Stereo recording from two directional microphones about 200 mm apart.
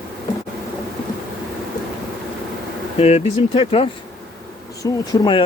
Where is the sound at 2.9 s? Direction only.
30° left (ahead or behind).